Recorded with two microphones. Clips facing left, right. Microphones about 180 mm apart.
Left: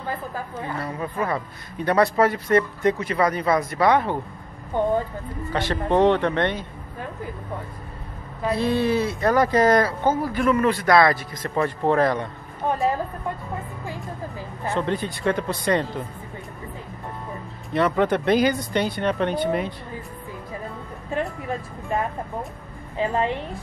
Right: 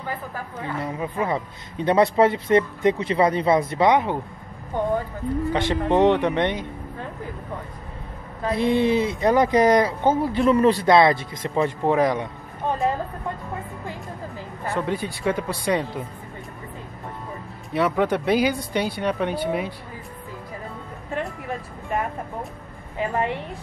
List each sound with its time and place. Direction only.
0.7 s speech: 15° right (ahead or behind)
5.5 s speech: 15° right (ahead or behind)
8.5 s speech: 20° right (ahead or behind)
14.8 s speech: 10° right (ahead or behind)
17.7 s speech: 5° right (ahead or behind)
21.2 s a woman's voice: 20° left (ahead or behind)